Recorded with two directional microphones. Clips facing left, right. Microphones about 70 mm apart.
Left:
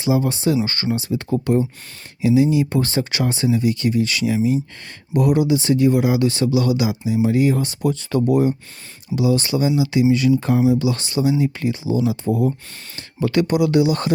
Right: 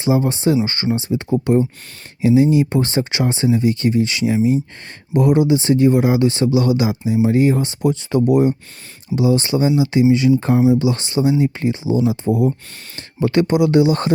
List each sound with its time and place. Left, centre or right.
0.0 s speech: right
13.0 s speech: right